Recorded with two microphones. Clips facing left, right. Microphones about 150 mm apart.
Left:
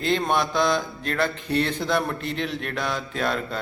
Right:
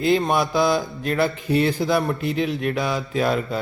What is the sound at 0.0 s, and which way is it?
Speech, 5° right (ahead or behind).